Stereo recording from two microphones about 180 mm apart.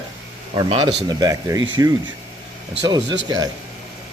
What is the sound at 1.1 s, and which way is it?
Speech, 20° right (ahead or behind).